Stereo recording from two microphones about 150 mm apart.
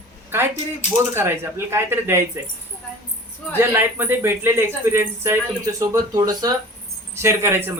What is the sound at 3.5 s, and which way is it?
Speech, 15° right (ahead or behind).